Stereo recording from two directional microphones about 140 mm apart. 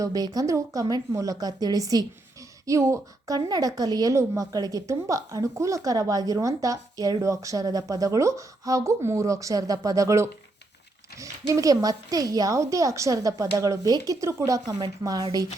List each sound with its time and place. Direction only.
0.0 s a woman's voice: 25° right (ahead or behind)